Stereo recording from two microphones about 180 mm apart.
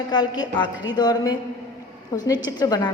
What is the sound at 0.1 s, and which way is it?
A woman's voice, 25° left (ahead or behind).